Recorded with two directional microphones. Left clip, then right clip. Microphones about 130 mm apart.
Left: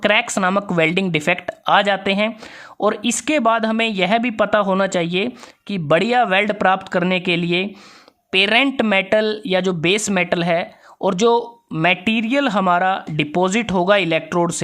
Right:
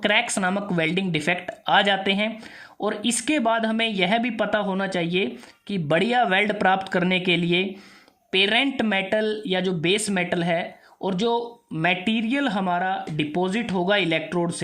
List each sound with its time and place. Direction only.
0.0 s speech: 30° left (ahead or behind); by 13.9 s 50° left (ahead or behind)
13.9 s speech: 35° left (ahead or behind)
14.3 s speech: 55° left (ahead or behind)